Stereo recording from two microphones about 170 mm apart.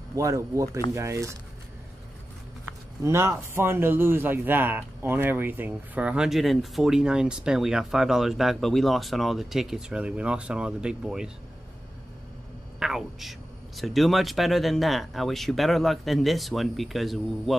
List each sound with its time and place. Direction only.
0.1 s speech: 20° right (ahead or behind)
3.0 s speech: 15° right (ahead or behind)
12.7 s speech: centre (ahead or behind)